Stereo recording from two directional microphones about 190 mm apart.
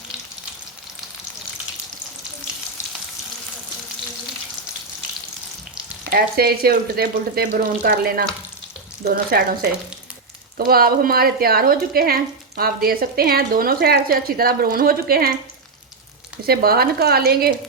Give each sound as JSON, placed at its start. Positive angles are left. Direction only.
{"t": 6.1, "sound": "speech", "side_deg": -55}
{"t": 10.7, "sound": "speech", "side_deg": -50}
{"t": 16.5, "sound": "speech", "side_deg": -55}